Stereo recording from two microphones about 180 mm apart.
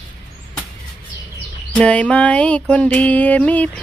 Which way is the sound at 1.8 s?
5° left (ahead or behind).